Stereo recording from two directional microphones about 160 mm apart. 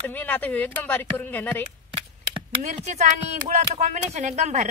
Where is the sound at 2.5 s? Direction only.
45° right (ahead or behind).